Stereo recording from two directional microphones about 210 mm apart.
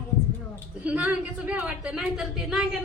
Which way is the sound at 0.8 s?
5° right (ahead or behind).